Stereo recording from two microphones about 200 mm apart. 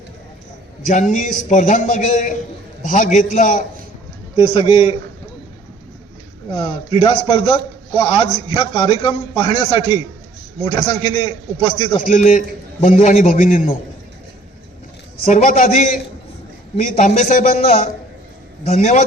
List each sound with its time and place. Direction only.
0.9 s a man's voice: 35° left (ahead or behind)
4.4 s a man's voice: 25° left (ahead or behind)
6.5 s a man's voice: 25° left (ahead or behind)
15.2 s a man's voice: 35° left (ahead or behind)